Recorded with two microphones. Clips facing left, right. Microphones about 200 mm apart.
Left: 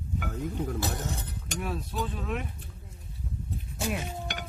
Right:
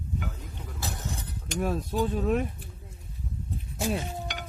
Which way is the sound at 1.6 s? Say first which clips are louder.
Right 6 dB; 45° right (ahead or behind).